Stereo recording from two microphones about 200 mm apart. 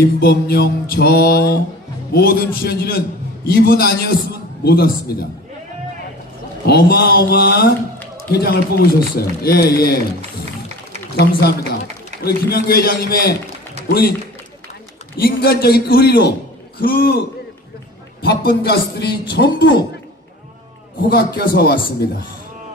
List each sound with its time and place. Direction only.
0.0 s speech: 50° left (ahead or behind)
6.6 s speech: 50° left (ahead or behind)
11.1 s a man's voice: 55° left (ahead or behind)
15.1 s speech: 50° left (ahead or behind)
18.2 s a man's voice: 50° left (ahead or behind)
21.1 s speech: 50° left (ahead or behind)